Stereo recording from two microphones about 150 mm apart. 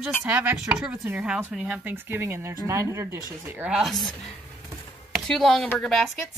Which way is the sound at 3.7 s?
Centre (ahead or behind).